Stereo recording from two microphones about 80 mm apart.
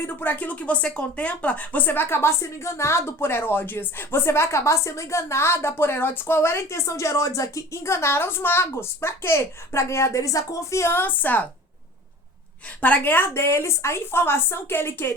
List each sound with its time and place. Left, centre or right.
0.0 s speech: left
12.8 s a woman's voice: left